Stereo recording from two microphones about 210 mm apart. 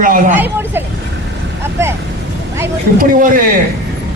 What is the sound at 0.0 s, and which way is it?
Speech, 40° right (ahead or behind).